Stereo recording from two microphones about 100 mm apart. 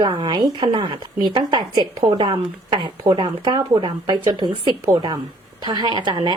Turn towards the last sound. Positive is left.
turn(degrees=-50)  # may be behind; listen again after turning